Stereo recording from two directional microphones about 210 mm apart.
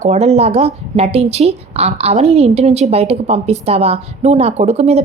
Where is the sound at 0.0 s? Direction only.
30° right (ahead or behind).